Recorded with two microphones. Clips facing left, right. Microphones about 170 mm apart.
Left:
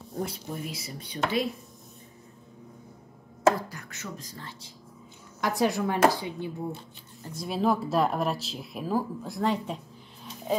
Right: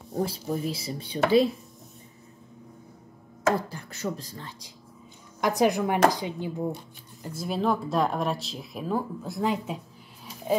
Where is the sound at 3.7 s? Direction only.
30° right (ahead or behind).